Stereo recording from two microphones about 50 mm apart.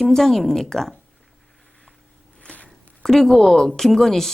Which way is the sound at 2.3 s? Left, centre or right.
Left.